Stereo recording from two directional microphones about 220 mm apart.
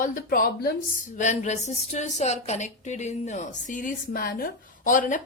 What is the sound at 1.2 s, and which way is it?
A woman's voice, 30° left (ahead or behind).